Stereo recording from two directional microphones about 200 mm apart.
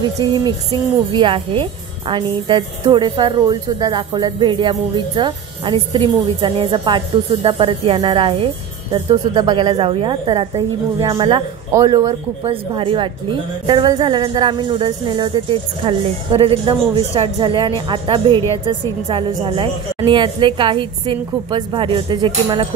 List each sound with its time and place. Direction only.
0.0 s a woman's voice: 20° right (ahead or behind)